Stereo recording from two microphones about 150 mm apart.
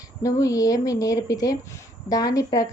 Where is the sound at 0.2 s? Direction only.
20° left (ahead or behind).